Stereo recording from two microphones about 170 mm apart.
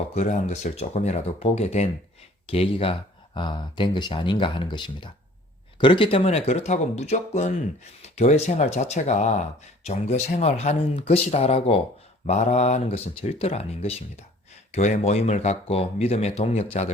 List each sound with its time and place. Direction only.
0.1 s speech: 40° left (ahead or behind)